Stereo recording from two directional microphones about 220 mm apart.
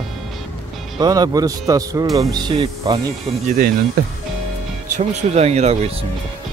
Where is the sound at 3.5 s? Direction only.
45° right (ahead or behind).